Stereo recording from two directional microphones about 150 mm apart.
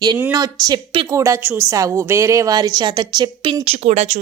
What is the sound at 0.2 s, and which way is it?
A woman's voice, 20° right (ahead or behind).